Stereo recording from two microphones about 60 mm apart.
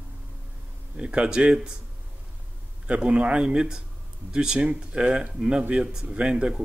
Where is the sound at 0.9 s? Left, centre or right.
Centre.